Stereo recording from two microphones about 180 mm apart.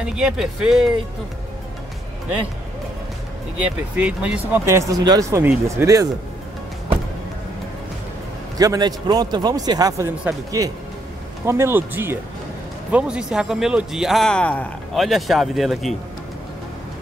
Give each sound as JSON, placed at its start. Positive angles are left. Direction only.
{"t": 0.0, "sound": "speech", "side_deg": -5}
{"t": 3.5, "sound": "speech", "side_deg": -5}
{"t": 8.5, "sound": "a man's voice", "side_deg": -20}